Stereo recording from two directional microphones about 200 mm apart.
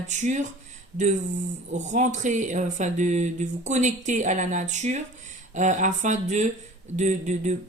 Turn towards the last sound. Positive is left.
turn(degrees=-35)  # may be behind; listen again after turning